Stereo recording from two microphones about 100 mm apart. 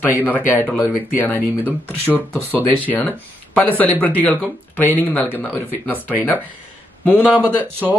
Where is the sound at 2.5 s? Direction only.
20° left (ahead or behind).